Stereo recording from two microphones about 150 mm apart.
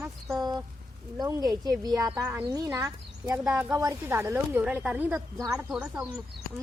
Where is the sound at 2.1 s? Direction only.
10° right (ahead or behind).